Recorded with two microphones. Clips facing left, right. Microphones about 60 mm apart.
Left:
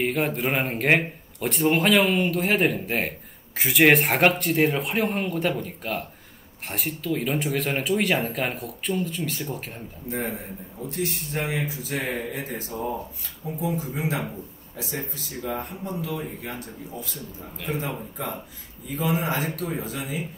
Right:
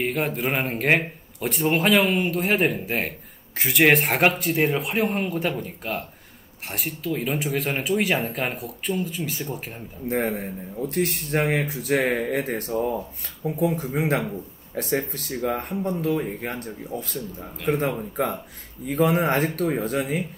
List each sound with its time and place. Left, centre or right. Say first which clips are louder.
0.0 s speech: even; centre
10.0 s a man's voice: right 6 dB; right
17.7 s a man's voice: right 6 dB; right